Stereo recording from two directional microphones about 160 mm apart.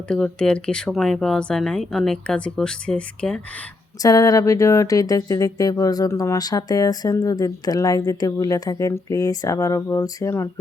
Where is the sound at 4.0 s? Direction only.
20° left (ahead or behind).